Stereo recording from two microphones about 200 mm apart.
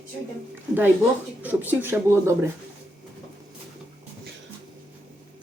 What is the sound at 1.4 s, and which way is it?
Speech, 10° right (ahead or behind).